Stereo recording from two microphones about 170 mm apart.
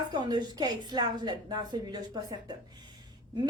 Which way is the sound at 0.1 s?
25° right (ahead or behind).